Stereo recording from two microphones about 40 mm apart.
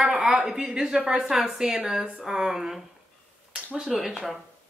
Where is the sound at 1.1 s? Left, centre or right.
Centre.